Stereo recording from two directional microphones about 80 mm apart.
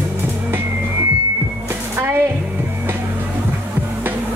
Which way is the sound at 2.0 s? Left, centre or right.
Right.